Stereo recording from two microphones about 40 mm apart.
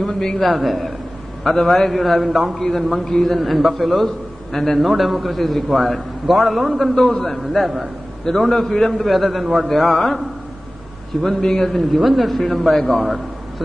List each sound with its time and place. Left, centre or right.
0.0 s a man's voice: centre
0.4 s a man's voice: centre
7.1 s a man's voice: centre
7.6 s a man's voice: centre
9.0 s a man's voice: centre
11.2 s a man's voice: centre
12.0 s a man's voice: centre